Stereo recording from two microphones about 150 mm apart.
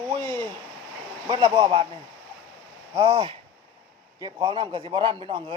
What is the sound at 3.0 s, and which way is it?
A man's voice, 35° right (ahead or behind).